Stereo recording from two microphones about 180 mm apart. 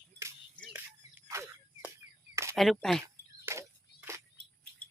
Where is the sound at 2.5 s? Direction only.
Centre (ahead or behind).